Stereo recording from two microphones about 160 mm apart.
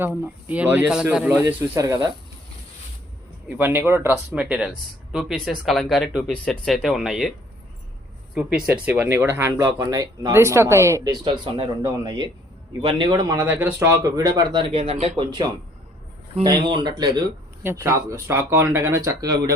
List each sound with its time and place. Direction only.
0.0 s speech: 10° right (ahead or behind)
1.8 s speech: 25° right (ahead or behind)
3.6 s speech: 15° right (ahead or behind)
8.4 s speech: 5° right (ahead or behind); by 19.5 s 20° right (ahead or behind)